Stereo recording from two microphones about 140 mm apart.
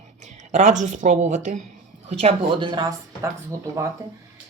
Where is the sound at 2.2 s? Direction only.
40° right (ahead or behind).